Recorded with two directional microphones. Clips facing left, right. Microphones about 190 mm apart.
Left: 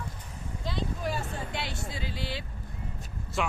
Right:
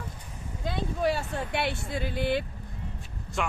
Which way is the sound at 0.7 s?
65° right (ahead or behind).